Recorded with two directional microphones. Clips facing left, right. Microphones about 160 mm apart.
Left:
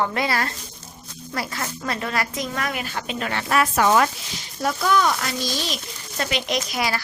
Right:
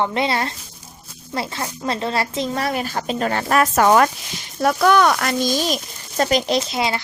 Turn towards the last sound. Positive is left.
turn(degrees=-25)  # may be behind; listen again after turning